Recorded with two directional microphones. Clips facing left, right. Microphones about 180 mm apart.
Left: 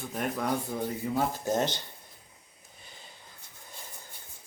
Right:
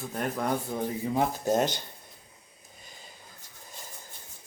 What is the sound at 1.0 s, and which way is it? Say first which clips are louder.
Speech: right 3 dB; 15° right (ahead or behind).